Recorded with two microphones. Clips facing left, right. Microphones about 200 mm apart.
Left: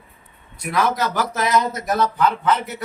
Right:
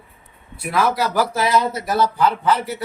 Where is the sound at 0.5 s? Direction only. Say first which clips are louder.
Right 1 dB; 5° right (ahead or behind).